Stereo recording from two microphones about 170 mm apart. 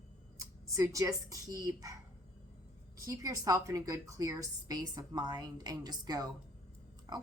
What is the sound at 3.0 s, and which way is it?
Speech, 20° right (ahead or behind).